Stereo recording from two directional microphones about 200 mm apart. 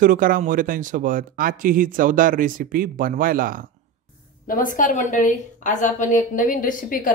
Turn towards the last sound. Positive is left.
turn(degrees=45)  # may be behind; listen again after turning